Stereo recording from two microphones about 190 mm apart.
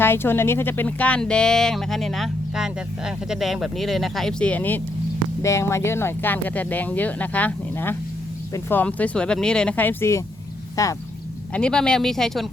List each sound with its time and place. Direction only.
0.0 s speech: 10° left (ahead or behind)
11.5 s speech: 5° left (ahead or behind)